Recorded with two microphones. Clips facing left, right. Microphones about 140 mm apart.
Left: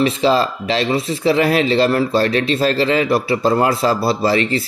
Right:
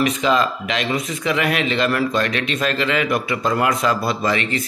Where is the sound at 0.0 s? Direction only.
30° left (ahead or behind).